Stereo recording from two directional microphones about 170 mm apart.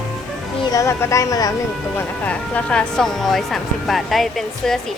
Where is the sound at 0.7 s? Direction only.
15° left (ahead or behind).